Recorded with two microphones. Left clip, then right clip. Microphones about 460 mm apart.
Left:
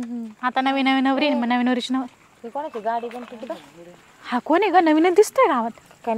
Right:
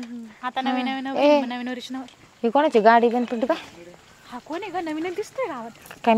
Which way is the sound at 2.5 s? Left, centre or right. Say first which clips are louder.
Right 10 dB; right.